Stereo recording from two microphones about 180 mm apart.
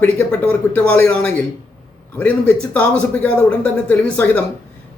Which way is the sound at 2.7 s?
5° left (ahead or behind).